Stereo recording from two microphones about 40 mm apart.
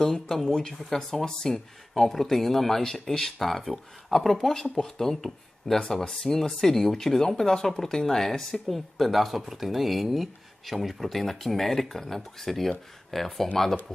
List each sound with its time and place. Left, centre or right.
0.1 s speech: centre